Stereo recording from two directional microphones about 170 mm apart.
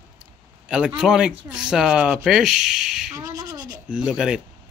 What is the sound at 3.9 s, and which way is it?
Speech, 5° right (ahead or behind).